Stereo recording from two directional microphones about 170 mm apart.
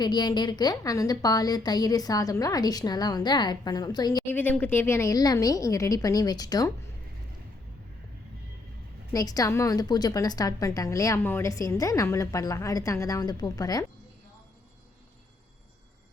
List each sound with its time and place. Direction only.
0.0 s a woman's voice: 25° left (ahead or behind)
4.3 s a woman's voice: 10° left (ahead or behind)
9.1 s a woman's voice: 20° left (ahead or behind)